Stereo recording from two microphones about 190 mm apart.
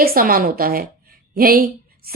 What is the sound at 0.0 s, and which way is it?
A woman's voice, 50° right (ahead or behind).